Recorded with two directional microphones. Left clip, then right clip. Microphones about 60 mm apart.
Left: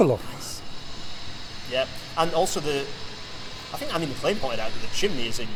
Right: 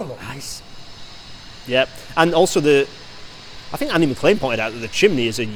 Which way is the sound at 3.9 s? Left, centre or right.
Right.